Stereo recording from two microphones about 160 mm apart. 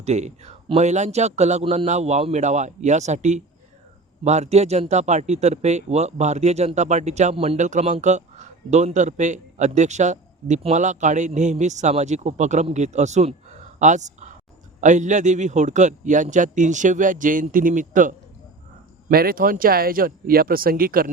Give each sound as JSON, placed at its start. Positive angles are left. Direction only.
{"t": 0.0, "sound": "speech", "side_deg": -45}
{"t": 13.7, "sound": "a sound", "side_deg": -50}
{"t": 14.8, "sound": "speech", "side_deg": -50}
{"t": 19.0, "sound": "speech", "side_deg": -70}